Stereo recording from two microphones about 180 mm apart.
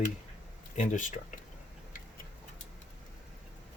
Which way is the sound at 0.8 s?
45° left (ahead or behind).